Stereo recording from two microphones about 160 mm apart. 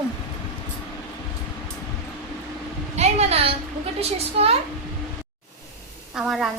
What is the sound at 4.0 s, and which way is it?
Speech, 40° right (ahead or behind).